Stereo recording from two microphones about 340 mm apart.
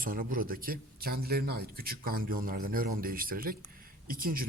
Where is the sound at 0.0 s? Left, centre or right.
Right.